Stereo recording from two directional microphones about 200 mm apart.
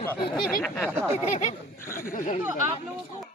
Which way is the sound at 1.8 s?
10° left (ahead or behind).